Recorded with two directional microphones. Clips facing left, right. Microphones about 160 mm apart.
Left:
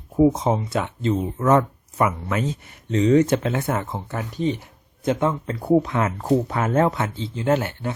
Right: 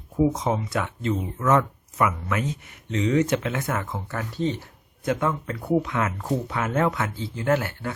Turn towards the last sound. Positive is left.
turn(degrees=20)  # may be behind; listen again after turning